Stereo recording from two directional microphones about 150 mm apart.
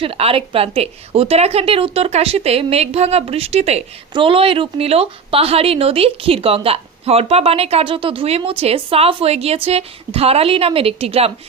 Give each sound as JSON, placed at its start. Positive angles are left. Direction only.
{"t": 0.0, "sound": "speech", "side_deg": -40}